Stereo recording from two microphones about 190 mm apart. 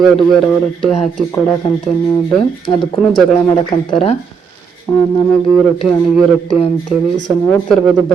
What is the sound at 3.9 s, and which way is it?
Speech, 30° left (ahead or behind).